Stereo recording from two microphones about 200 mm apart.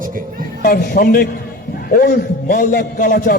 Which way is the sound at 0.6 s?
45° left (ahead or behind).